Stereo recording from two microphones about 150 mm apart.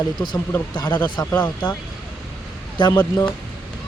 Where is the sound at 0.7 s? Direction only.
30° left (ahead or behind).